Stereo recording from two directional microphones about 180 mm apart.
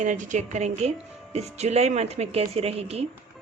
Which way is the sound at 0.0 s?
45° right (ahead or behind).